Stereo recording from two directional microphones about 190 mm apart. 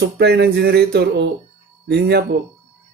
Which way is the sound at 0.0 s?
60° right (ahead or behind).